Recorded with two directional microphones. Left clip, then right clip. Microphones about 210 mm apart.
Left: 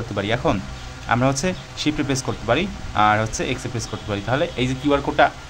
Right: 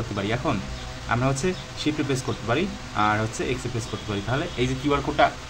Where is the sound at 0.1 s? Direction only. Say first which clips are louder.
Left 6 dB; 30° left (ahead or behind).